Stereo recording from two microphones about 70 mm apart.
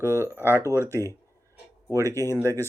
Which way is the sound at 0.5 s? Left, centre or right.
Left.